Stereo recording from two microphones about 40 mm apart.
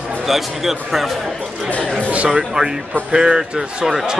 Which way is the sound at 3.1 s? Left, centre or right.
Centre.